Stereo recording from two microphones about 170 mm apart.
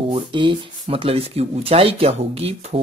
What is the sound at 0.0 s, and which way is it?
Speech, 30° right (ahead or behind).